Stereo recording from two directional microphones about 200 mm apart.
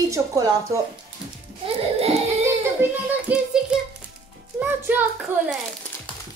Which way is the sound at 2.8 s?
10° right (ahead or behind).